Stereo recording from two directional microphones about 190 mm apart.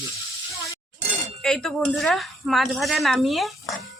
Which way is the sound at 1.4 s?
Centre (ahead or behind).